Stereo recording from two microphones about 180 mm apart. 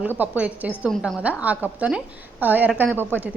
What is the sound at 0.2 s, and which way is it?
A woman's voice, 10° right (ahead or behind).